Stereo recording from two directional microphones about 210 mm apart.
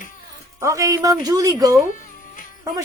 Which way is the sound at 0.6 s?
15° right (ahead or behind).